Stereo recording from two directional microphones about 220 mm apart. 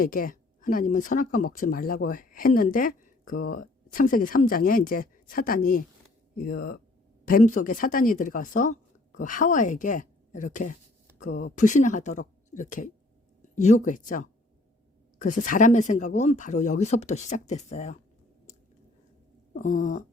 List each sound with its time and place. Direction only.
0.0 s speech: 40° left (ahead or behind)
19.5 s speech: 35° left (ahead or behind)